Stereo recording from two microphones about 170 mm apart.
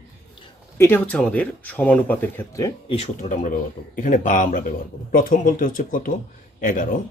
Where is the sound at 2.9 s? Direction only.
40° left (ahead or behind).